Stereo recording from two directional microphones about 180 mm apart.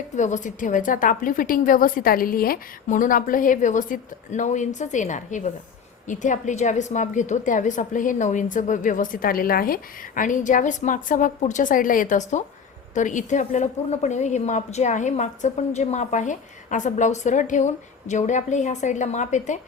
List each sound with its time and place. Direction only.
0.2 s a woman's voice: 45° left (ahead or behind)